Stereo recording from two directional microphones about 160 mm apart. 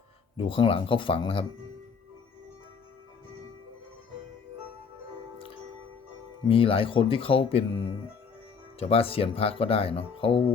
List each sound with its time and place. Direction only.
0.3 s speech: 35° left (ahead or behind)
6.5 s speech: 35° left (ahead or behind)